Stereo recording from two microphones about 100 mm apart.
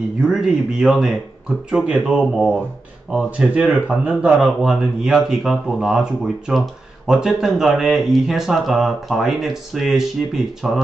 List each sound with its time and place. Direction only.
0.2 s speech: 5° right (ahead or behind)